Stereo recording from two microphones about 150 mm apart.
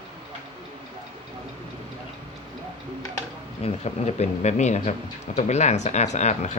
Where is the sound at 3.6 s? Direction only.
45° left (ahead or behind).